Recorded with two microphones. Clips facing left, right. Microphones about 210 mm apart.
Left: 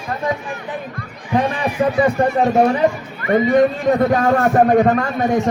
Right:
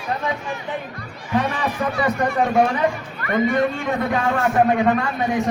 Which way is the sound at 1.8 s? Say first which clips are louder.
Left 7 dB; 30° left (ahead or behind).